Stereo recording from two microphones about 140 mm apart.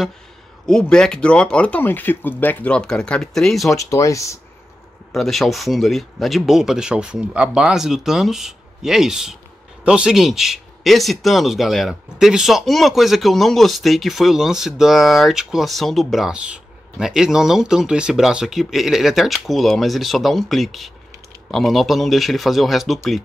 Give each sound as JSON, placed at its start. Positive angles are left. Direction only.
{"t": 0.7, "sound": "speech", "side_deg": 5}
{"t": 3.7, "sound": "speech", "side_deg": 20}
{"t": 5.1, "sound": "speech", "side_deg": 0}